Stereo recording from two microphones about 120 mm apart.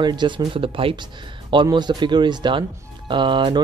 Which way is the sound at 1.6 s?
35° right (ahead or behind).